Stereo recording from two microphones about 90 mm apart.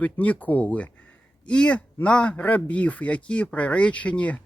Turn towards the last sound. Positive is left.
turn(degrees=15)  # may be behind; listen again after turning